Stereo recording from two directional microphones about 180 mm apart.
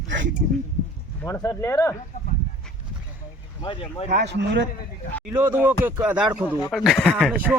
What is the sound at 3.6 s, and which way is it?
Speech, 25° left (ahead or behind).